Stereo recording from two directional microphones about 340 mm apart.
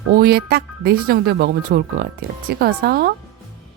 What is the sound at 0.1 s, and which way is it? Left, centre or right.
A woman's voice, right.